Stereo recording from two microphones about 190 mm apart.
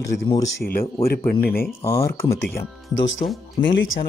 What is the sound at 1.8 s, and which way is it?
Speech, 15° left (ahead or behind).